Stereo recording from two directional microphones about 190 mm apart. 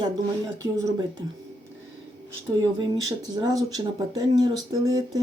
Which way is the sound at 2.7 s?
25° right (ahead or behind).